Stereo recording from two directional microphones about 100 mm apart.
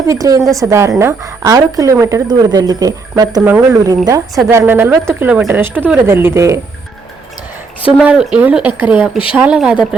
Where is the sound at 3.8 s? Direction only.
35° right (ahead or behind).